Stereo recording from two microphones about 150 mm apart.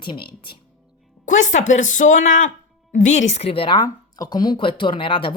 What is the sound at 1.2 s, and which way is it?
Speech, 55° left (ahead or behind).